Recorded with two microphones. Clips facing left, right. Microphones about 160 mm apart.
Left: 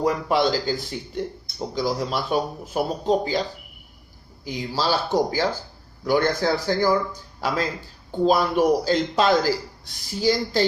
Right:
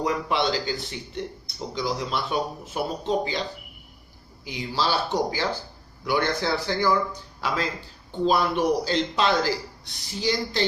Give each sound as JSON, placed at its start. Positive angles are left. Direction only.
{"t": 0.0, "sound": "a man's voice", "side_deg": 45}
{"t": 4.4, "sound": "a man's voice", "side_deg": 40}